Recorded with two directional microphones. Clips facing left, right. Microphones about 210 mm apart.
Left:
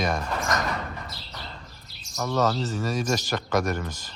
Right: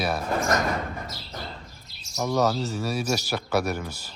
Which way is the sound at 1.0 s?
45° right (ahead or behind).